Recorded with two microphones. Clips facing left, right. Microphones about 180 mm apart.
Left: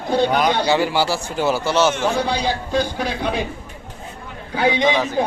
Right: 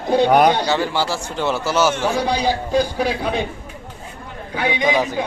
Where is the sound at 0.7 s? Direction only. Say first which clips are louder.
Left 2 dB; 10° left (ahead or behind).